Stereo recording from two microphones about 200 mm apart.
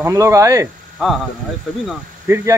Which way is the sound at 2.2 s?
10° right (ahead or behind).